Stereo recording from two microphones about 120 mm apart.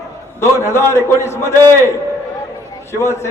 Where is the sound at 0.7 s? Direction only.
25° left (ahead or behind).